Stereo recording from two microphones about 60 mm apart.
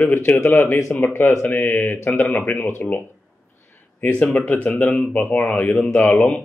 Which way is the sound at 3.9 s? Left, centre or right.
Left.